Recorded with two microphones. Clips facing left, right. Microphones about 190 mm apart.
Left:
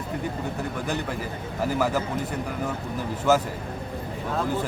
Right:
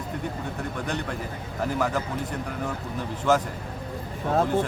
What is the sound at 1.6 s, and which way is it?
Speech, 5° left (ahead or behind).